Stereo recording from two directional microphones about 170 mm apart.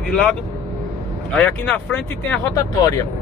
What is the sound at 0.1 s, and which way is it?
Speech, 5° left (ahead or behind).